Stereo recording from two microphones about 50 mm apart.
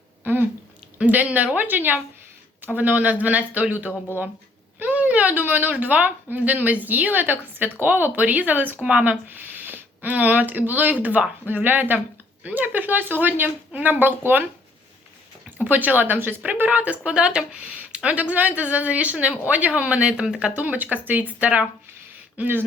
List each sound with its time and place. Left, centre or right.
0.9 s speech: right
8.8 s speech: right
9.0 s speech: right
15.5 s speech: right
20.7 s speech: right